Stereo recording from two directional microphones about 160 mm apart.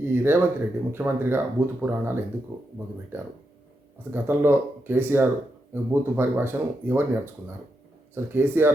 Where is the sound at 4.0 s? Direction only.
15° right (ahead or behind).